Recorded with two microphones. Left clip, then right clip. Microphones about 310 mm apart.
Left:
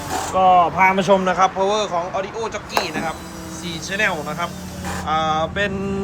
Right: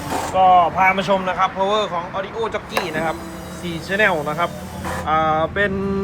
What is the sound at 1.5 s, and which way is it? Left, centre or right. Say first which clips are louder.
Speech: even; centre.